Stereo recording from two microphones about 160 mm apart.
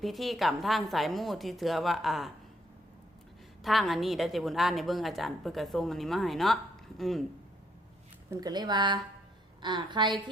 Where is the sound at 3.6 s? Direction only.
Centre (ahead or behind).